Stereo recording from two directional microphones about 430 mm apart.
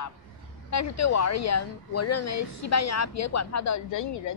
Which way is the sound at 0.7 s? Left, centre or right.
Left.